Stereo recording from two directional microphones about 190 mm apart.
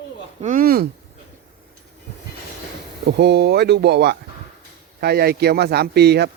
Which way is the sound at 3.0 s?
60° right (ahead or behind).